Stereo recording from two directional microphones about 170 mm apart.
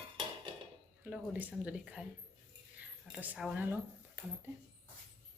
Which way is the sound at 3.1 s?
5° right (ahead or behind).